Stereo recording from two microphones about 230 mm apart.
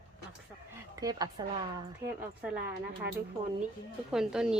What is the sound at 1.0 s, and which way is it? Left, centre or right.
Speech, centre.